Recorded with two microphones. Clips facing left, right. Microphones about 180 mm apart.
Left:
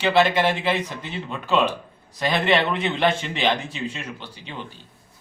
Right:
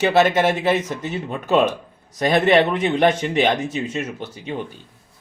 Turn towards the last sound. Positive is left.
turn(degrees=-50)  # may be behind; listen again after turning